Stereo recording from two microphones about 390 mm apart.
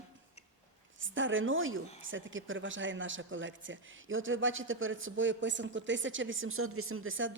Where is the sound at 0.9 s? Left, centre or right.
Right.